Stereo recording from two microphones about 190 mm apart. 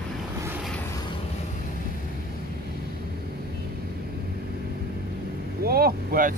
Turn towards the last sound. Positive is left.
turn(degrees=-50)  # may be behind; listen again after turning